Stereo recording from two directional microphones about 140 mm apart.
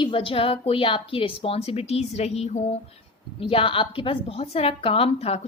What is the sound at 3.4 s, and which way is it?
A woman's voice, 40° left (ahead or behind).